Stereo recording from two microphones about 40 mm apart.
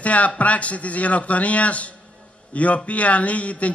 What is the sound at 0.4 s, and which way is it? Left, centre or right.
A man's voice, left.